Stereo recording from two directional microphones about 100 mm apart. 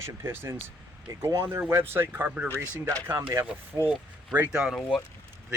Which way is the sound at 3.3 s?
30° right (ahead or behind).